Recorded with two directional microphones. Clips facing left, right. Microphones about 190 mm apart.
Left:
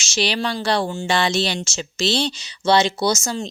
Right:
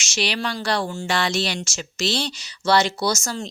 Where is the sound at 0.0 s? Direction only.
30° left (ahead or behind).